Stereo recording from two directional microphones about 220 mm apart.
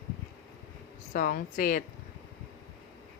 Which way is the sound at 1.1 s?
40° left (ahead or behind).